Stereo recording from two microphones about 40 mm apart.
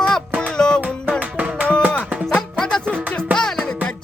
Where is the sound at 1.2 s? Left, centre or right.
Right.